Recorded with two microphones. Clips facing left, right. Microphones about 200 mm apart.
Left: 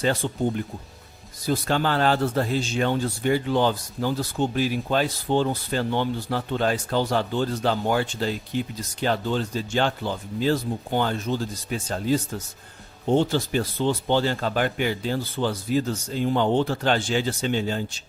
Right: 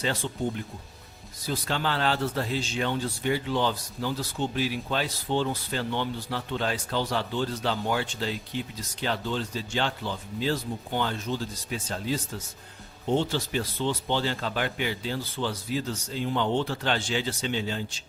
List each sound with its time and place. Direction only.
0.2 s a man's voice: 50° left (ahead or behind)
1.5 s a man's voice: 50° left (ahead or behind)